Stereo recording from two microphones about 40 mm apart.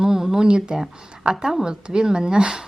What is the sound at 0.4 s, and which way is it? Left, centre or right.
Speech, right.